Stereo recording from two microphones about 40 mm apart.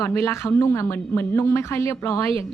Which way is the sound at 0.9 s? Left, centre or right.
Left.